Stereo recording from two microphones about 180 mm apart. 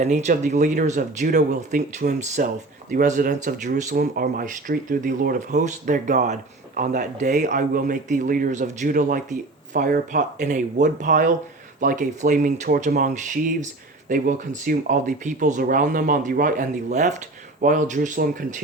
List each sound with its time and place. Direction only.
0.0 s speech: 40° right (ahead or behind)
4.0 s speech: 55° right (ahead or behind)
12.6 s speech: 55° right (ahead or behind)